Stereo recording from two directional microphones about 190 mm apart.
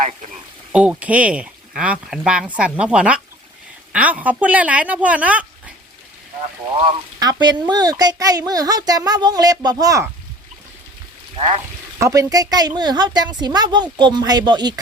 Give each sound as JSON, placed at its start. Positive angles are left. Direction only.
{"t": 0.7, "sound": "speech", "side_deg": -5}
{"t": 7.2, "sound": "a child's voice", "side_deg": -20}
{"t": 11.3, "sound": "speech", "side_deg": -35}
{"t": 11.9, "sound": "a child's voice", "side_deg": -15}